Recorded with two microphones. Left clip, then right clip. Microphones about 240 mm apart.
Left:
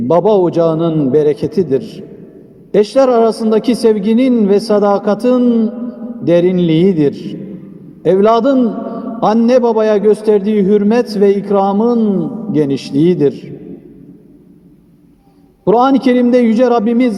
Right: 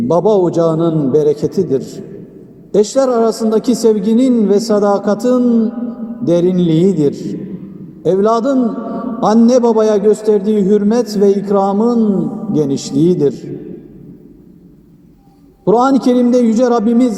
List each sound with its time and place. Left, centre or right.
0.1 s a man's voice: left
15.6 s a man's voice: left